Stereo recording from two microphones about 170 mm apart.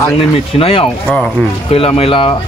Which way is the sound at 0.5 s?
35° left (ahead or behind).